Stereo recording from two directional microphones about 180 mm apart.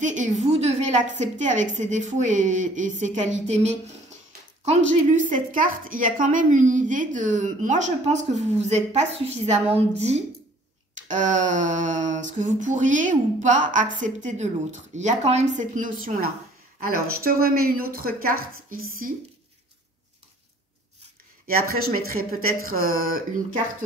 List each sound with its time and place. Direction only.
0.0 s a woman's voice: 40° right (ahead or behind)
21.5 s a woman's voice: 55° right (ahead or behind)